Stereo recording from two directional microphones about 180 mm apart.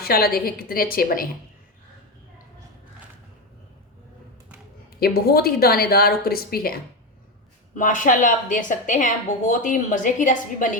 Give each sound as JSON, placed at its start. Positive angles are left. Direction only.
{"t": 0.0, "sound": "a woman's voice", "side_deg": 55}
{"t": 4.9, "sound": "a woman's voice", "side_deg": 60}
{"t": 7.8, "sound": "a woman's voice", "side_deg": 45}